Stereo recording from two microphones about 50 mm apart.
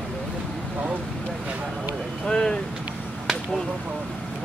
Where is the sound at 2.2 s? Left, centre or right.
Centre.